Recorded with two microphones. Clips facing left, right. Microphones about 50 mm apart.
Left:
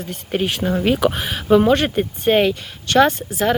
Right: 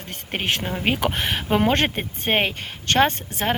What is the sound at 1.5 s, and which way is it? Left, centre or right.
Speech, right.